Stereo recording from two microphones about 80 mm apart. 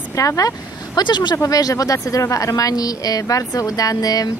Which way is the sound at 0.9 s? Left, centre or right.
Left.